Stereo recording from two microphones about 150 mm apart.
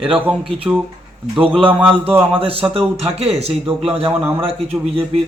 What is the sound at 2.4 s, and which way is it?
Speech, 40° right (ahead or behind).